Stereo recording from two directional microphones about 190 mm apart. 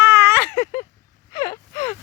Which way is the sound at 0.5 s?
15° left (ahead or behind).